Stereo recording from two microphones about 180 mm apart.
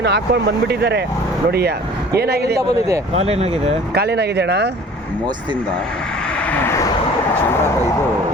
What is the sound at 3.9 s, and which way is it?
Speech, 65° right (ahead or behind).